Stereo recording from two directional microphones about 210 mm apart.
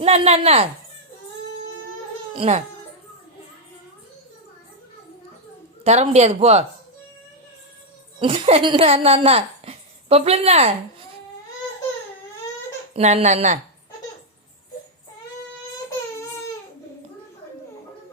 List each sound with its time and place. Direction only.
0.0 s speech: 30° right (ahead or behind)
2.3 s speech: 25° right (ahead or behind)
5.8 s speech: 30° right (ahead or behind)
8.2 s a woman's voice: 25° right (ahead or behind)
12.9 s speech: 30° right (ahead or behind)